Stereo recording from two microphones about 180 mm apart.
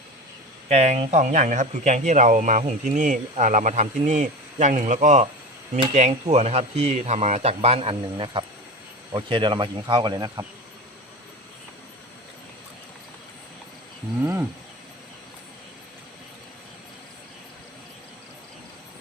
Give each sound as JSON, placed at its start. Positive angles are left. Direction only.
{"t": 0.7, "sound": "speech", "side_deg": -40}
{"t": 14.2, "sound": "wild animals", "side_deg": -15}